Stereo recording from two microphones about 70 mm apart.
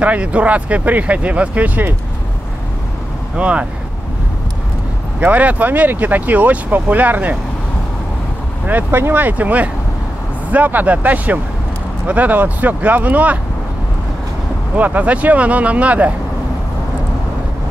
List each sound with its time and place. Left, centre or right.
0.0 s speech: centre
3.3 s speech: centre
5.2 s speech: right
8.6 s speech: right
14.8 s speech: right